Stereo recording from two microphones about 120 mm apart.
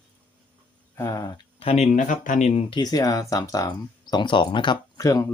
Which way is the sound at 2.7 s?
35° left (ahead or behind).